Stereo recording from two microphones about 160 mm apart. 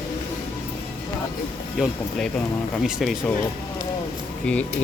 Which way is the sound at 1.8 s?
5° left (ahead or behind).